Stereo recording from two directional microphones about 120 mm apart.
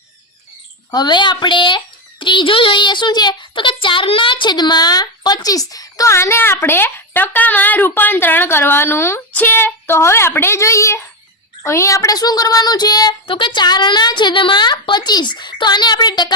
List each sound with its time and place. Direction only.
0.9 s a child's voice: 35° left (ahead or behind)